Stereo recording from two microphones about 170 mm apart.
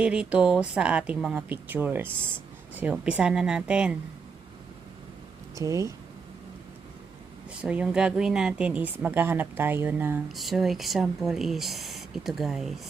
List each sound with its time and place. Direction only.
0.0 s a woman's voice: 5° right (ahead or behind)
5.6 s speech: 20° right (ahead or behind)
7.6 s a woman's voice: 5° right (ahead or behind)
10.2 s speech: centre (ahead or behind)